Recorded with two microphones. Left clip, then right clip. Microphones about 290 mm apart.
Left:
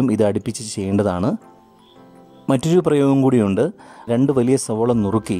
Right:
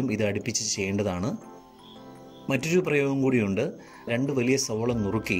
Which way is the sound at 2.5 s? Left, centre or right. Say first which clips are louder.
Left 8 dB; left.